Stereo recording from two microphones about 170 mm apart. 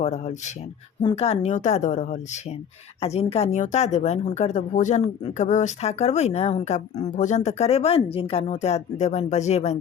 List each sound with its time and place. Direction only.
0.0 s a woman's voice: 45° left (ahead or behind)